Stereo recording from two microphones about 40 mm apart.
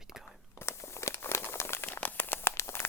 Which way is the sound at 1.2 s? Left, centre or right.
Left.